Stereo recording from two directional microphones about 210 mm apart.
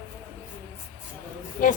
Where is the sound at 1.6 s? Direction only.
35° left (ahead or behind).